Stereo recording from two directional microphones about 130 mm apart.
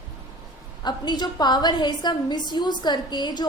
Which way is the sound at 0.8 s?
35° left (ahead or behind).